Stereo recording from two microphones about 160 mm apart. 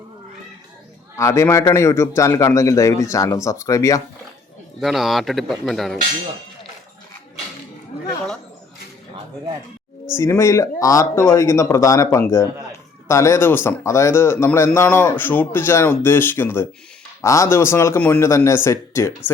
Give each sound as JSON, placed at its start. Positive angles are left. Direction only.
{"t": 1.1, "sound": "a man's voice", "side_deg": 20}
{"t": 4.8, "sound": "speech", "side_deg": 0}
{"t": 10.2, "sound": "speech", "side_deg": 15}